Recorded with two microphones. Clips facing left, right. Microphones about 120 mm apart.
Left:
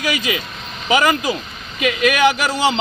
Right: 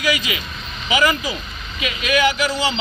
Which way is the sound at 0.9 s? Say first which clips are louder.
Left 3 dB; 45° left (ahead or behind).